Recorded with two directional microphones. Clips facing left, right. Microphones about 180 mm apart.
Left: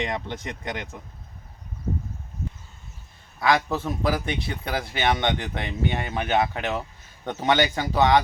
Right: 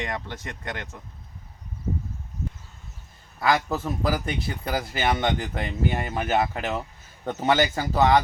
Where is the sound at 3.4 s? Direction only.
Centre (ahead or behind).